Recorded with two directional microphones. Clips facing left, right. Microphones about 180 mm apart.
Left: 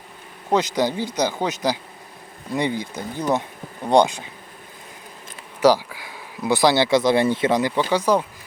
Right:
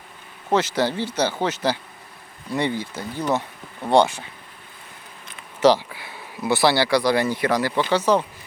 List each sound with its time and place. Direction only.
0.5 s speech: 15° left (ahead or behind)
5.5 s speech: 10° left (ahead or behind)